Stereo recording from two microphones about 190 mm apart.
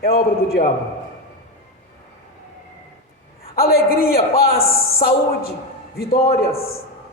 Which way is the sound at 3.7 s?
55° left (ahead or behind).